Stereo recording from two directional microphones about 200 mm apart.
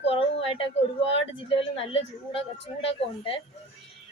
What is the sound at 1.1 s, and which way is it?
A woman's voice, 30° left (ahead or behind).